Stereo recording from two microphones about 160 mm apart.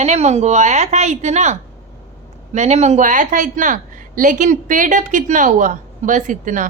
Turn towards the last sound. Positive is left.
turn(degrees=-55)  # may be behind; listen again after turning